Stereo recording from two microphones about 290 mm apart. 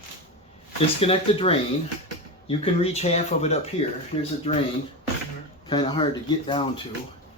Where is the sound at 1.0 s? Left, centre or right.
Centre.